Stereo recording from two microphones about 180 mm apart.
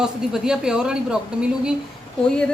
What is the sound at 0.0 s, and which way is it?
A woman's voice, 5° right (ahead or behind).